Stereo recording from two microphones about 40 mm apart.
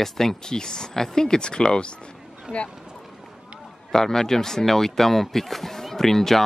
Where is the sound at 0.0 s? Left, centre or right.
Centre.